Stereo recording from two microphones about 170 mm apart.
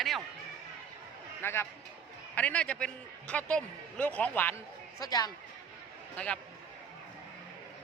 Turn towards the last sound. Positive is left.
turn(degrees=5)  # may be behind; listen again after turning